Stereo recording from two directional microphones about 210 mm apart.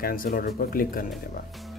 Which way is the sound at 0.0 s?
40° left (ahead or behind).